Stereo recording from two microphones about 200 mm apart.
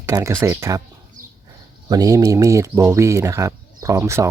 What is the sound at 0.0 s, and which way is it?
Speech, 15° right (ahead or behind).